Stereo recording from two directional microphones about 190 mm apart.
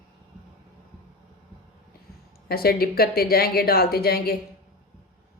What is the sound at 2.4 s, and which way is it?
A woman's voice, 55° left (ahead or behind).